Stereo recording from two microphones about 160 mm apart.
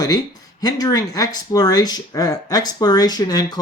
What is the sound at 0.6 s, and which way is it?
Speech, 25° left (ahead or behind).